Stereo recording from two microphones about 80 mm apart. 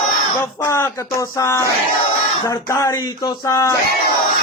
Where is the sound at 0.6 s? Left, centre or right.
Left.